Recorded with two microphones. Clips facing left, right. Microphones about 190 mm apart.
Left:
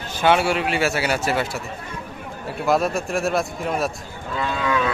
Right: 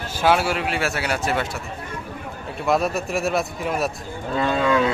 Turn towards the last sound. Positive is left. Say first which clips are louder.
# right 4 dB
turn(degrees=-35)  # may be behind; listen again after turning